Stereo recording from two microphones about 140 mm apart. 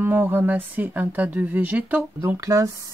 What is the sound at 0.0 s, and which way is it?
Speech, 15° right (ahead or behind).